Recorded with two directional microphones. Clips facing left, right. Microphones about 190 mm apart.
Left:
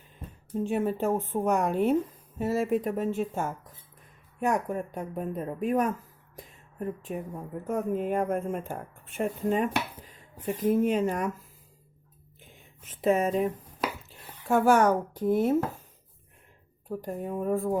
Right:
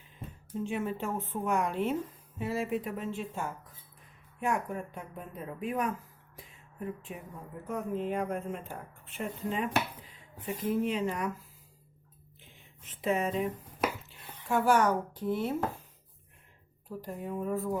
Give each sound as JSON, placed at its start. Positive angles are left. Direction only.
{"t": 0.5, "sound": "speech", "side_deg": 40}
{"t": 6.3, "sound": "a sound", "side_deg": 40}
{"t": 7.7, "sound": "speech", "side_deg": 50}
{"t": 12.4, "sound": "a sound", "side_deg": 45}
{"t": 14.4, "sound": "speech", "side_deg": 45}
{"t": 16.9, "sound": "speech", "side_deg": 50}